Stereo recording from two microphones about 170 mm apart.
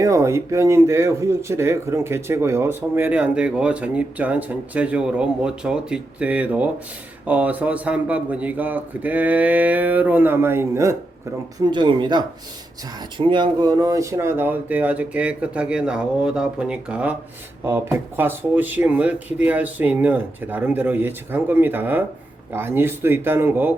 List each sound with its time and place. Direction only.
0.0 s speech: 15° right (ahead or behind)
11.6 s speech: 25° right (ahead or behind)